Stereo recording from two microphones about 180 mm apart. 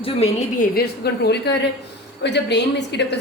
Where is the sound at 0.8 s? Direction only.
65° left (ahead or behind).